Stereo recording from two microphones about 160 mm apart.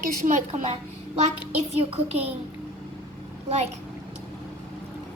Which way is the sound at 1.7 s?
40° right (ahead or behind).